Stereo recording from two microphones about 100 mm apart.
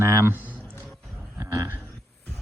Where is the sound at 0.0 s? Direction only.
25° right (ahead or behind).